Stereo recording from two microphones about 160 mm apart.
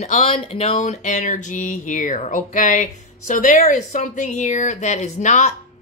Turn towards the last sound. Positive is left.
turn(degrees=50)  # may be behind; listen again after turning